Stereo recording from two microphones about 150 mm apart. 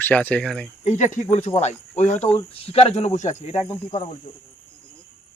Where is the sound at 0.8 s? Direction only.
55° left (ahead or behind); by 4.1 s 35° left (ahead or behind).